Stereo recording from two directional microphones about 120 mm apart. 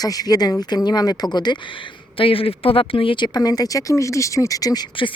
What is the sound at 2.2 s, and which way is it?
Speech, 50° left (ahead or behind).